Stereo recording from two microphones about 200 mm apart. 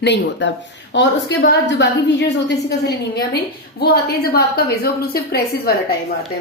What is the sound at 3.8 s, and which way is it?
A woman's voice, 50° left (ahead or behind).